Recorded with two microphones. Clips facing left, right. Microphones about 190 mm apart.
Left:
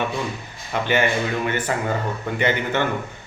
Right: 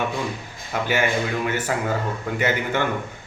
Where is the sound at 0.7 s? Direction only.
10° right (ahead or behind).